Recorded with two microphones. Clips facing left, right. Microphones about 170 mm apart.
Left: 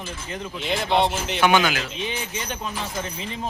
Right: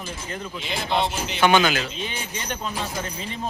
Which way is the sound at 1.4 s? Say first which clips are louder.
Right 1 dB; 10° left (ahead or behind).